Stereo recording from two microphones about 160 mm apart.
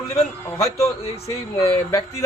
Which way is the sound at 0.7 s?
40° left (ahead or behind).